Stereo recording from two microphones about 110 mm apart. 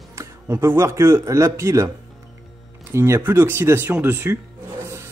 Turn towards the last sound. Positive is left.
turn(degrees=-15)  # may be behind; listen again after turning